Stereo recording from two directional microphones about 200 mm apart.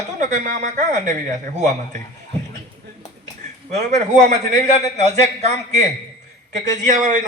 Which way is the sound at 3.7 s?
35° right (ahead or behind).